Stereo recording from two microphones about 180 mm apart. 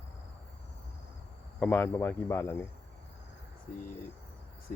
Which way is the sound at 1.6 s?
10° left (ahead or behind).